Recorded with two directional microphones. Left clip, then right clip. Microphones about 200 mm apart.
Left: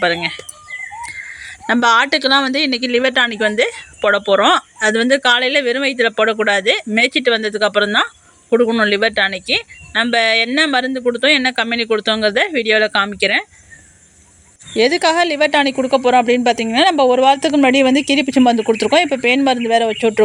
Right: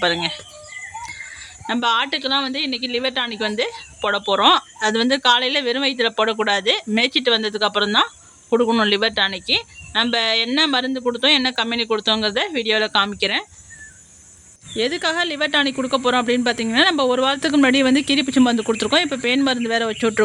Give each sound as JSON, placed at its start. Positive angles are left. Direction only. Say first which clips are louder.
{"t": 0.0, "sound": "speech", "louder": "left 3 dB", "side_deg": 5}
{"t": 1.0, "sound": "a sound", "louder": "left 5 dB", "side_deg": 5}
{"t": 1.6, "sound": "a woman's voice", "louder": "left 7 dB", "side_deg": 25}
{"t": 14.7, "sound": "a woman's voice", "louder": "left 8 dB", "side_deg": 25}